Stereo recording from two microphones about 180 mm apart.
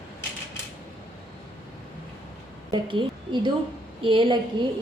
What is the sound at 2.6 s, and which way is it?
Speech, 25° right (ahead or behind).